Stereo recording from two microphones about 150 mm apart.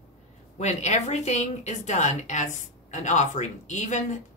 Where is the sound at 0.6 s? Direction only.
50° left (ahead or behind).